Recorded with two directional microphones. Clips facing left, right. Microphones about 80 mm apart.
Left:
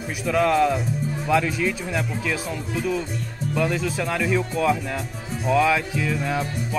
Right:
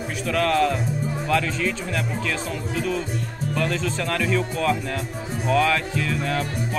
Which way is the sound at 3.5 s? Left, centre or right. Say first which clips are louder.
Left 2 dB; centre.